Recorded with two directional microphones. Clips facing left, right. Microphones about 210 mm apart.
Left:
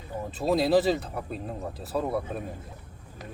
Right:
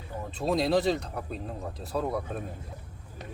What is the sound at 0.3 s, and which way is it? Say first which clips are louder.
Speech: left 3 dB; 5° left (ahead or behind).